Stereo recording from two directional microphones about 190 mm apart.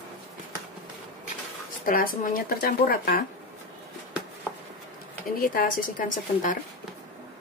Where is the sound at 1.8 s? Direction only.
45° left (ahead or behind).